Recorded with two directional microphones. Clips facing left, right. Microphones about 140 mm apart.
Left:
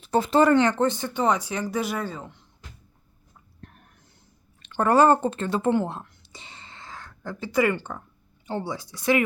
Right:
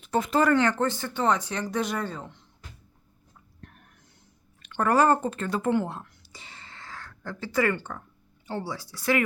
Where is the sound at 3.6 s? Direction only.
30° left (ahead or behind).